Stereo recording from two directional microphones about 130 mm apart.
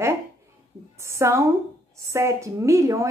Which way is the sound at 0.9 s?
20° right (ahead or behind).